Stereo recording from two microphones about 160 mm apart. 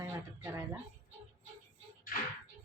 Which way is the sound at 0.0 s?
15° right (ahead or behind).